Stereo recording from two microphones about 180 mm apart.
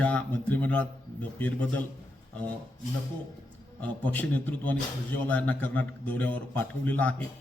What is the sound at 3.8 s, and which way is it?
A man's voice, 10° left (ahead or behind).